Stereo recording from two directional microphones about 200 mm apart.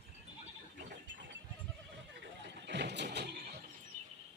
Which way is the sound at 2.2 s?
60° right (ahead or behind).